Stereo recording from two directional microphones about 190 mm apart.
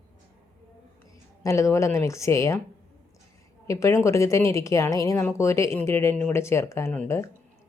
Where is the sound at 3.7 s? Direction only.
15° left (ahead or behind).